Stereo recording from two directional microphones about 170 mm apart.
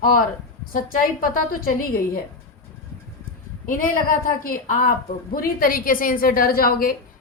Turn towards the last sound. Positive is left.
turn(degrees=60)  # may be behind; listen again after turning